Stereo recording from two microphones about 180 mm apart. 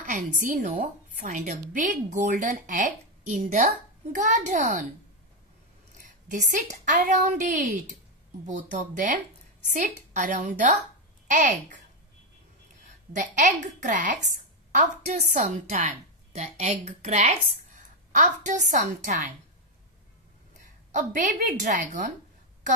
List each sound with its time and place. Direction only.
0.0 s a woman's voice: 45° right (ahead or behind)
5.9 s a woman's voice: 45° right (ahead or behind)
13.1 s a woman's voice: 45° right (ahead or behind)
20.9 s a woman's voice: 45° right (ahead or behind)